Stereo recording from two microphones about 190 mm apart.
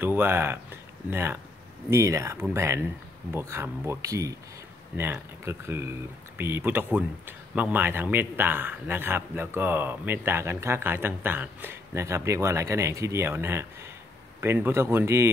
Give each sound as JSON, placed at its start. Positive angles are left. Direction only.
{"t": 0.0, "sound": "speech", "side_deg": -10}